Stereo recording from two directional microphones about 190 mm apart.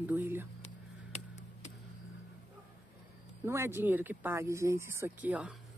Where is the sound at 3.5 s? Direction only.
15° right (ahead or behind).